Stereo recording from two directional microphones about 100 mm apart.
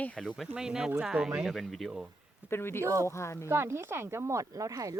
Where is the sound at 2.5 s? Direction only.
25° left (ahead or behind).